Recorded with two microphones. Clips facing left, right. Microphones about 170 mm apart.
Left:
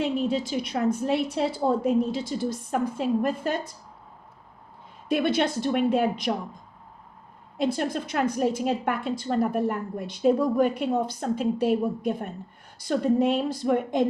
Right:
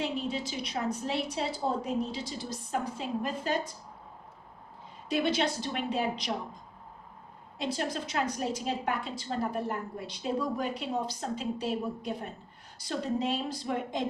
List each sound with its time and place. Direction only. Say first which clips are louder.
0.0 s a woman's voice: left 7 dB; 55° left (ahead or behind)
5.0 s a woman's voice: left 5 dB; 55° left (ahead or behind)
7.6 s a woman's voice: left 7 dB; 55° left (ahead or behind)